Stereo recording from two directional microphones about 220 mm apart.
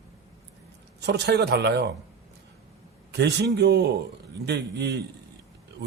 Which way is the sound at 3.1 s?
50° right (ahead or behind).